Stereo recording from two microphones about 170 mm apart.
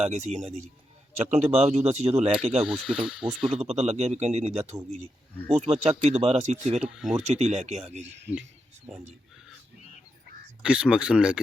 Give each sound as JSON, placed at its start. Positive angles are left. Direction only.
{"t": 0.0, "sound": "speech", "side_deg": -40}
{"t": 2.6, "sound": "speech", "side_deg": 0}
{"t": 3.5, "sound": "speech", "side_deg": -40}
{"t": 6.8, "sound": "speech", "side_deg": -5}
{"t": 7.3, "sound": "speech", "side_deg": -40}
{"t": 10.6, "sound": "speech", "side_deg": -5}